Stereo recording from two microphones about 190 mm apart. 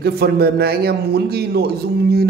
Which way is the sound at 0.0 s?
55° right (ahead or behind).